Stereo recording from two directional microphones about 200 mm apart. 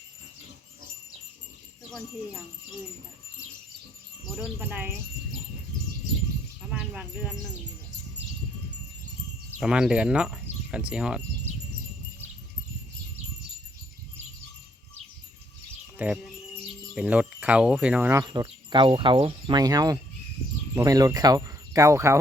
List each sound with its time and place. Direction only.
4.4 s speech: 10° right (ahead or behind)
6.7 s speech: 5° right (ahead or behind)
9.6 s speech: 5° right (ahead or behind)
16.0 s speech: 5° right (ahead or behind)